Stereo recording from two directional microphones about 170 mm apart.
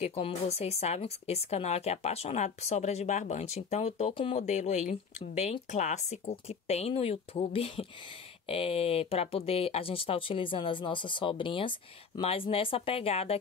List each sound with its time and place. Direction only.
0.0 s a woman's voice: 40° left (ahead or behind)